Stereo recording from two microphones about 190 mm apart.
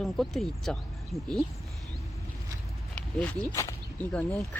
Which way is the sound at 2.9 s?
5° left (ahead or behind).